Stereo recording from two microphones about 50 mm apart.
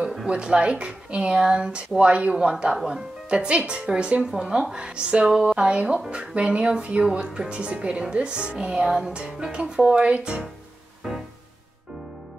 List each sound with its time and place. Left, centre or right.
0.3 s speech: centre
11.0 s music: centre